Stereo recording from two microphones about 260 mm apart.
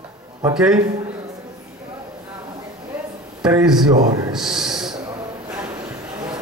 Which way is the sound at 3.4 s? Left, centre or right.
Centre.